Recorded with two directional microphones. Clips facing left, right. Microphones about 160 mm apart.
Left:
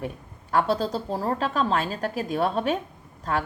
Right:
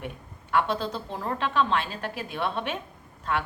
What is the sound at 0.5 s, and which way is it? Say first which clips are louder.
Speech: left 3 dB; 40° left (ahead or behind).